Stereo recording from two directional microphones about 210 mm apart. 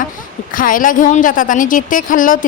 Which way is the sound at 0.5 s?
40° left (ahead or behind).